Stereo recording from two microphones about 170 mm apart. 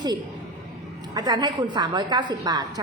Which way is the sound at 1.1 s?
25° right (ahead or behind).